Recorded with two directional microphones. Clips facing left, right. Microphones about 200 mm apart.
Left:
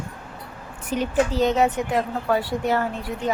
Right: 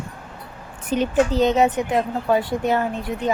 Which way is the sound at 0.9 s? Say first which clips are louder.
Right 3 dB; 20° right (ahead or behind).